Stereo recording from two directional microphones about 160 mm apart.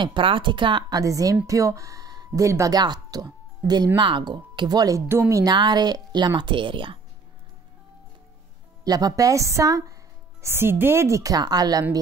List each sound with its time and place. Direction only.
0.0 s speech: 30° right (ahead or behind); by 5.4 s 15° right (ahead or behind)
5.4 s speech: 25° right (ahead or behind)
8.8 s speech: 25° right (ahead or behind)